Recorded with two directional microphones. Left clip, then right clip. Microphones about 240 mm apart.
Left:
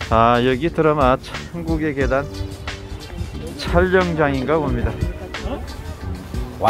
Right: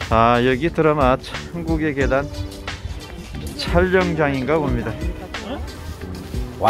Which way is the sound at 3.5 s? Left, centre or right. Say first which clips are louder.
Left 1 dB; centre.